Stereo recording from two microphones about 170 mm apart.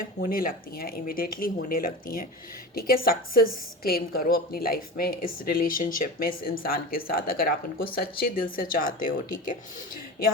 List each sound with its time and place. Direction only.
0.0 s a woman's voice: 55° left (ahead or behind)